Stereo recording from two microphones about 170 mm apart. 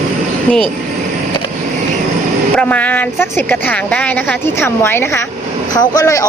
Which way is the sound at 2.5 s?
10° left (ahead or behind).